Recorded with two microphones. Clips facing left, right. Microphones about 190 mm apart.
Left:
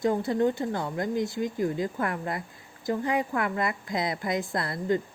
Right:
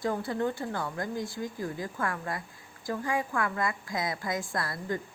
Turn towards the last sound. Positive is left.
turn(degrees=20)  # may be behind; listen again after turning